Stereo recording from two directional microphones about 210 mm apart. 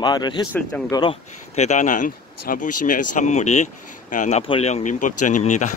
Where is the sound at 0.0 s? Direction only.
20° left (ahead or behind).